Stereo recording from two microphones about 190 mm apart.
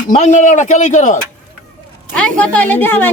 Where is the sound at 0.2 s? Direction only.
40° left (ahead or behind).